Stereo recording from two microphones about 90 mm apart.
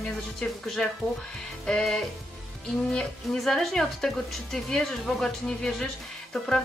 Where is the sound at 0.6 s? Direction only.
5° left (ahead or behind).